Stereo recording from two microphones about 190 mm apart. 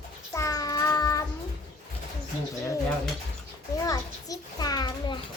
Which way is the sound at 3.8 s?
20° left (ahead or behind).